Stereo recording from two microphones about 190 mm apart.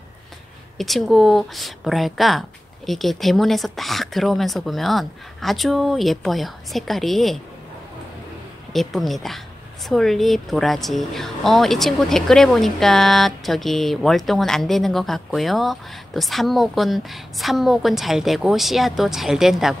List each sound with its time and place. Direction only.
0.7 s speech: centre (ahead or behind)
8.7 s speech: centre (ahead or behind)